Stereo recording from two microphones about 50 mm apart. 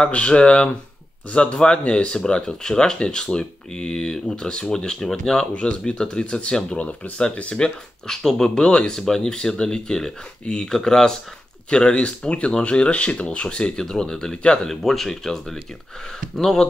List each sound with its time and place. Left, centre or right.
0.0 s speech: left
5.5 s speech: left
14.7 s speech: centre